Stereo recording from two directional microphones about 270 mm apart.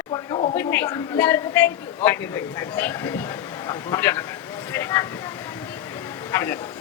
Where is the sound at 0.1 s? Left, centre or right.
Centre.